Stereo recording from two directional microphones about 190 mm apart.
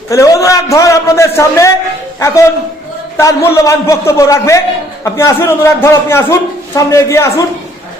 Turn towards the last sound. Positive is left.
turn(degrees=15)  # may be behind; listen again after turning